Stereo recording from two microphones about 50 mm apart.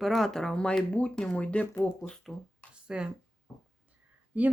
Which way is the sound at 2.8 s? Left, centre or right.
Centre.